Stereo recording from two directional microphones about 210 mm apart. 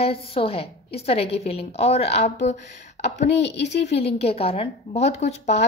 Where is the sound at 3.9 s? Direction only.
30° left (ahead or behind).